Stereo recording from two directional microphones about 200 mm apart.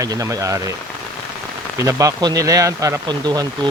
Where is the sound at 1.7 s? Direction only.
15° right (ahead or behind).